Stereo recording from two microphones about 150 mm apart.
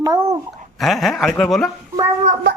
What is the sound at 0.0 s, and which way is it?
Speech, 25° right (ahead or behind).